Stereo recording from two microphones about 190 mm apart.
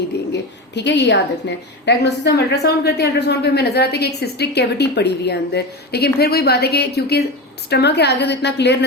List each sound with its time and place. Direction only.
0.3 s a woman's voice: 65° left (ahead or behind)